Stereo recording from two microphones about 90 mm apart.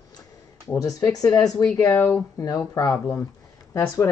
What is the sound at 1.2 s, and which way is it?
Speech, 40° left (ahead or behind).